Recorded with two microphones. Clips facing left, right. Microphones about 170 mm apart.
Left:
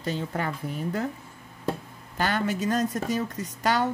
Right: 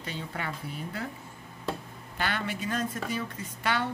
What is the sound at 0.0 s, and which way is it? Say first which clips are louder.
Speech: left 7 dB; 40° left (ahead or behind).